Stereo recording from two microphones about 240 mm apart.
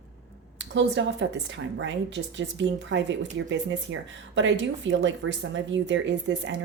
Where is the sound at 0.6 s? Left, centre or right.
Right.